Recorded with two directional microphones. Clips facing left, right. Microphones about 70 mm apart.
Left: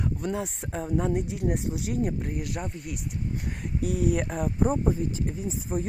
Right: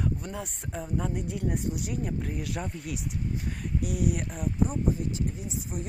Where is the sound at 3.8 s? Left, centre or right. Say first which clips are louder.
Left 4 dB; left.